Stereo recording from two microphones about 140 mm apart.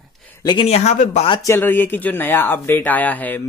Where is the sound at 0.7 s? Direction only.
55° left (ahead or behind).